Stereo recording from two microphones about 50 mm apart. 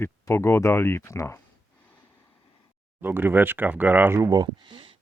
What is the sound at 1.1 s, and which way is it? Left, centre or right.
Speech, left.